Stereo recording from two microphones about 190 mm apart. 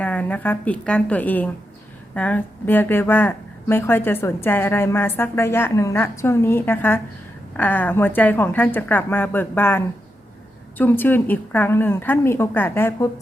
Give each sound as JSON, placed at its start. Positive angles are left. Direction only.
{"t": 0.0, "sound": "speech", "side_deg": 10}